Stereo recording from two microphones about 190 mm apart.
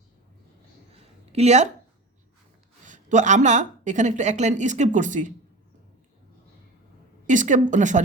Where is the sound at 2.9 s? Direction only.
40° right (ahead or behind).